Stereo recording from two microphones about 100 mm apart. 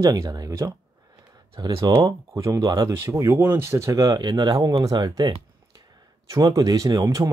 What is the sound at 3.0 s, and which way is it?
Speech, 25° right (ahead or behind).